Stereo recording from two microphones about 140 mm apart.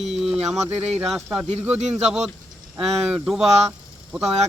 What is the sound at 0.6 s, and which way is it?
Speech, 50° right (ahead or behind).